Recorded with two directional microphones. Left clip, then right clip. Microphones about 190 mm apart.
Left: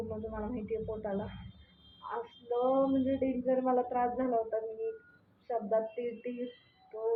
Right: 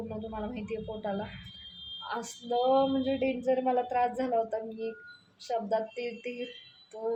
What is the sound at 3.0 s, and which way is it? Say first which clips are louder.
Speech: right 3 dB; 25° right (ahead or behind).